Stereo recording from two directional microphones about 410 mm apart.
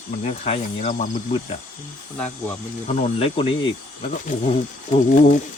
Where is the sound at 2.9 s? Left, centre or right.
Centre.